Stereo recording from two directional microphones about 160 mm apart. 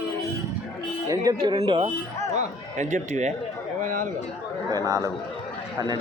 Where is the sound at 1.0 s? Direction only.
20° right (ahead or behind).